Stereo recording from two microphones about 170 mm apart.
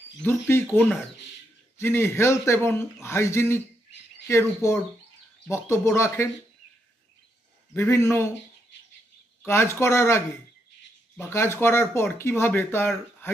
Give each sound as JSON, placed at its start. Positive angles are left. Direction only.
{"t": 0.3, "sound": "speech", "side_deg": 15}
{"t": 7.7, "sound": "speech", "side_deg": 15}
{"t": 9.5, "sound": "speech", "side_deg": 15}